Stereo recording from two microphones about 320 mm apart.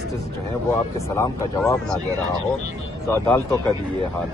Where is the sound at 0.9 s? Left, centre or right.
Centre.